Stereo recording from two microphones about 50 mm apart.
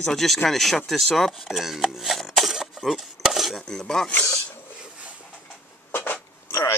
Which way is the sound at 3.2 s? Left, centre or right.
Centre.